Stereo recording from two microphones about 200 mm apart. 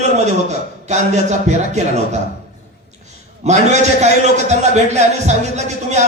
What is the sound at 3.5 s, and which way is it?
A man's voice, 35° right (ahead or behind).